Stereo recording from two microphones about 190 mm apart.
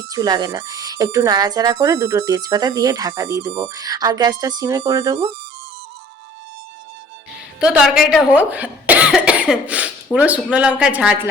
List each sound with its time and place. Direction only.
0.1 s speech: 20° right (ahead or behind)
7.6 s speech: 5° right (ahead or behind)